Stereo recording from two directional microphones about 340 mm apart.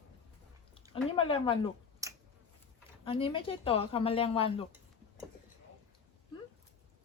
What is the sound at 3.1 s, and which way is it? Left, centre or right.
Speech, centre.